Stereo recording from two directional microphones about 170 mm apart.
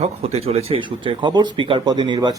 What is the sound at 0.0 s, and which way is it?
A man's voice, 40° right (ahead or behind).